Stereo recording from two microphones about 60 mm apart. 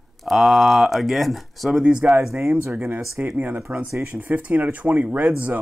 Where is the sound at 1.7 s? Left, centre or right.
Centre.